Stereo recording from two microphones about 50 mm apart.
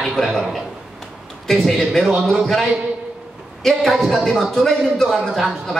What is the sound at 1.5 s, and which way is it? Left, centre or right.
A man's voice, centre.